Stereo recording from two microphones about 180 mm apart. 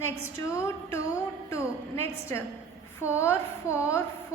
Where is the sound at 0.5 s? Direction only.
15° left (ahead or behind).